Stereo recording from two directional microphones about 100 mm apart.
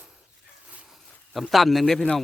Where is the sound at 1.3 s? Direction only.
Centre (ahead or behind).